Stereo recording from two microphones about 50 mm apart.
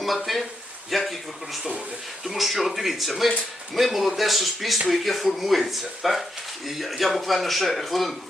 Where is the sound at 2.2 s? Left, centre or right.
Centre.